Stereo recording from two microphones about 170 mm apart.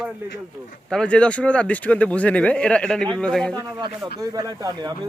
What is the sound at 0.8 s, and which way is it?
Speech, 5° left (ahead or behind).